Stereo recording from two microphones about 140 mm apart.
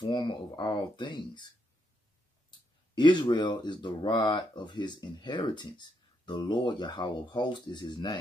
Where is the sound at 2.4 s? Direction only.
35° left (ahead or behind).